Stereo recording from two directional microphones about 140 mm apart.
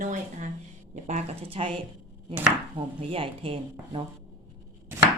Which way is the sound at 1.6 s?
45° right (ahead or behind).